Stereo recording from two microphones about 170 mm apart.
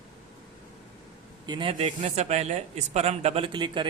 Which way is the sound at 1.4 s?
30° right (ahead or behind).